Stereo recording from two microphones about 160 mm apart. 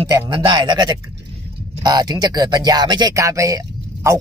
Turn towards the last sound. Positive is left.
turn(degrees=-20)  # may be behind; listen again after turning